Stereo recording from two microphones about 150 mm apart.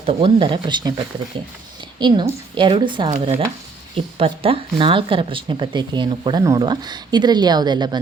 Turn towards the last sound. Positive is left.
turn(degrees=-30)  # may be behind; listen again after turning